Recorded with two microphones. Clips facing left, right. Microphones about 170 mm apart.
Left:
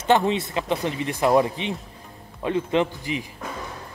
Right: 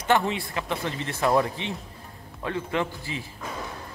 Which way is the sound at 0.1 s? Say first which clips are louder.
Left 4 dB; 20° left (ahead or behind).